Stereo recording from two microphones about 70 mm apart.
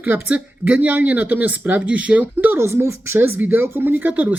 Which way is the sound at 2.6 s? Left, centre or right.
Right.